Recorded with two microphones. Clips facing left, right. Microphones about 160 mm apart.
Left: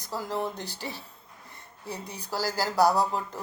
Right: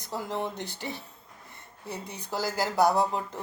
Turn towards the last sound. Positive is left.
turn(degrees=-20)  # may be behind; listen again after turning